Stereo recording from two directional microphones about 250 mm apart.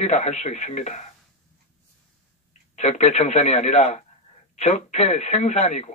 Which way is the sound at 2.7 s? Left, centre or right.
Left.